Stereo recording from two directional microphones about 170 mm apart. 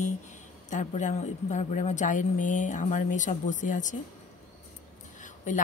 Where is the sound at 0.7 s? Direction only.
45° left (ahead or behind).